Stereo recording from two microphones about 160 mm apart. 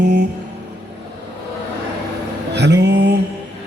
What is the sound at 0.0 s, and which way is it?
Music, 90° right.